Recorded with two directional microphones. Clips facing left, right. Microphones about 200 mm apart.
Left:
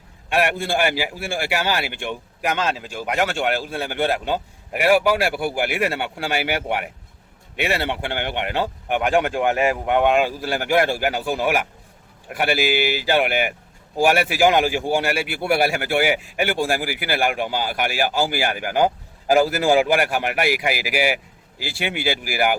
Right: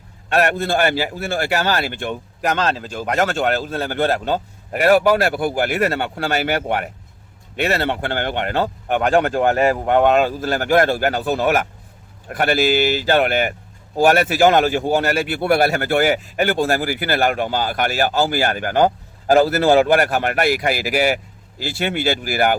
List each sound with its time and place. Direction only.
0.3 s speech: 10° left (ahead or behind)
2.0 s speech: 40° right (ahead or behind)
2.6 s speech: 10° left (ahead or behind)
3.1 s speech: 40° right (ahead or behind)
3.5 s speech: 10° left (ahead or behind)
3.9 s speech: 40° right (ahead or behind)
5.1 s speech: 10° left (ahead or behind)
9.1 s speech: 40° right (ahead or behind)
10.2 s speech: 10° left (ahead or behind)